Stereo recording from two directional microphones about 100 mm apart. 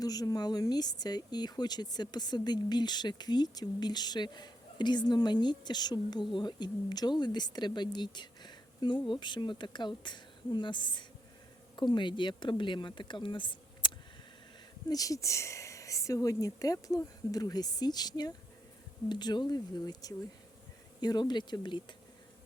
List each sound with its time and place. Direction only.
0.0 s speech: 40° left (ahead or behind); by 13.9 s 55° left (ahead or behind)
14.8 s speech: 35° left (ahead or behind)